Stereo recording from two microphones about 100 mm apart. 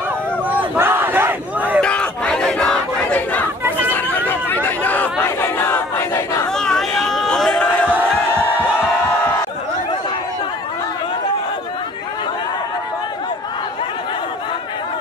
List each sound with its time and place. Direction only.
0.5 s battle cry: 20° right (ahead or behind)
1.8 s battle cry: 10° left (ahead or behind)
3.6 s chatter: 20° right (ahead or behind)
4.3 s a sound: 20° left (ahead or behind)
6.5 s chatter: 5° left (ahead or behind)
7.9 s crowd: 20° right (ahead or behind)